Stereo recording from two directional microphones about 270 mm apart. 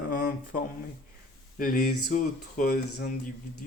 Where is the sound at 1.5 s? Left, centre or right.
Left.